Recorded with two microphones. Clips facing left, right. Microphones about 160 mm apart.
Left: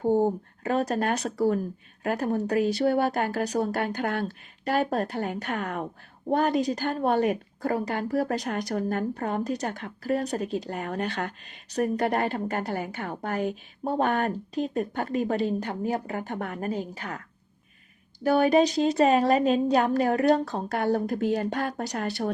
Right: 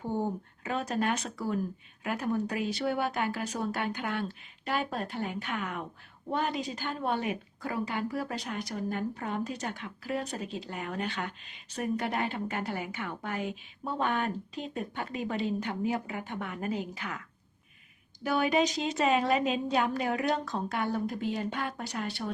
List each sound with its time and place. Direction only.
0.0 s a woman's voice: 40° left (ahead or behind)